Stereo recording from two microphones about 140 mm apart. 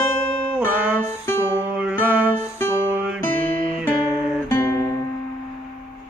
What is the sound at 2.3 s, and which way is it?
Music, 15° left (ahead or behind).